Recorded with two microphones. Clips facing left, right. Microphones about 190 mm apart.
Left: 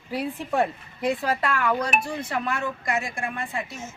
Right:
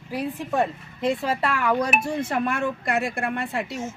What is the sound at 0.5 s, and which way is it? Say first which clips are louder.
Speech: even; 5° left (ahead or behind).